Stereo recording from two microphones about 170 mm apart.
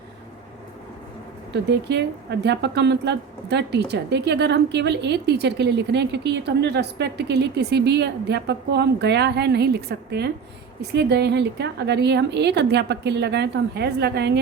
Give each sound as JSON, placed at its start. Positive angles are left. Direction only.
{"t": 1.7, "sound": "a woman's voice", "side_deg": -90}